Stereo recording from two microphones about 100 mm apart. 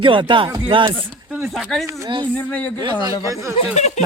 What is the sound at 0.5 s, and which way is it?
Speech, 50° right (ahead or behind).